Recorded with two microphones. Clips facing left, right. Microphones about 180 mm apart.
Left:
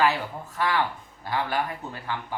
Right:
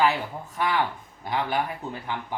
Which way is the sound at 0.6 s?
15° right (ahead or behind).